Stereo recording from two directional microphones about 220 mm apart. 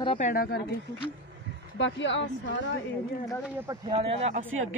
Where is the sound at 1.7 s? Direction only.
55° left (ahead or behind).